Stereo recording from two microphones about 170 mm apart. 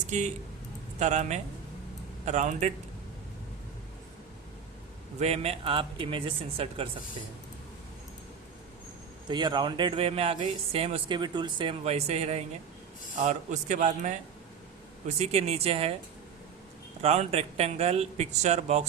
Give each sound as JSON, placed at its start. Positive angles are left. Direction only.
{"t": 0.1, "sound": "speech", "side_deg": -45}
{"t": 5.2, "sound": "speech", "side_deg": -40}
{"t": 9.2, "sound": "speech", "side_deg": -25}
{"t": 17.0, "sound": "speech", "side_deg": -40}